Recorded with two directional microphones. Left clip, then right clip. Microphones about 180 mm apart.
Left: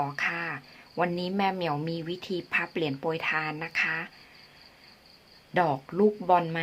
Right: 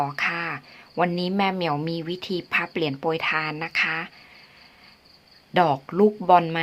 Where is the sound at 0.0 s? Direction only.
20° right (ahead or behind).